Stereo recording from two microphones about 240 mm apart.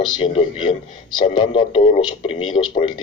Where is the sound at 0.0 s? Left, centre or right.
Left.